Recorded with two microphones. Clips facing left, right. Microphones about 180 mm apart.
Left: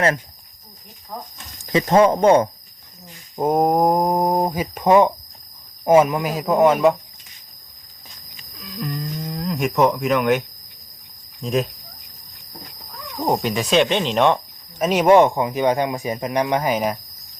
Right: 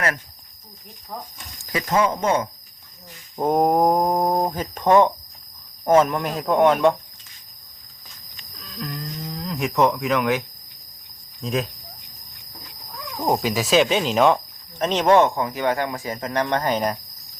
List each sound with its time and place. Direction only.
1.6 s speech: 25° left (ahead or behind)
3.3 s a man's voice: 5° left (ahead or behind)
8.5 s cattle: centre (ahead or behind)
11.4 s a man's voice: centre (ahead or behind)
13.2 s a man's voice: centre (ahead or behind)
14.8 s speech: 10° left (ahead or behind)